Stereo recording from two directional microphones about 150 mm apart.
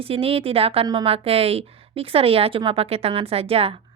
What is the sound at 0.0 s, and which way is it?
Speech, 40° right (ahead or behind).